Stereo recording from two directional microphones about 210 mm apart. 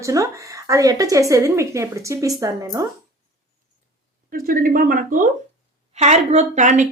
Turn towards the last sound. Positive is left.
turn(degrees=-35)  # may be behind; listen again after turning